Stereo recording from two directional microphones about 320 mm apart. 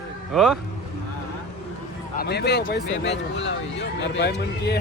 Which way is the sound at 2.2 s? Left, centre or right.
Left.